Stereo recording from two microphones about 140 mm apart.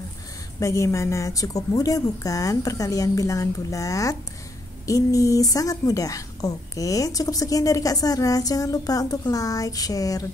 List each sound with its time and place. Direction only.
0.6 s a woman's voice: 20° left (ahead or behind)